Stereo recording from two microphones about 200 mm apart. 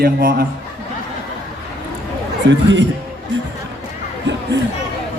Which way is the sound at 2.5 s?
65° right (ahead or behind).